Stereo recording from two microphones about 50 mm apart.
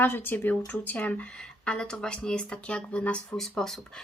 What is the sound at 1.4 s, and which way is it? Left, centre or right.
Speech, centre.